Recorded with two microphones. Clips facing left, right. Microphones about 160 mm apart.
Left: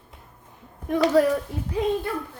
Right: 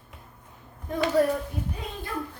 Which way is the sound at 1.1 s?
90° left.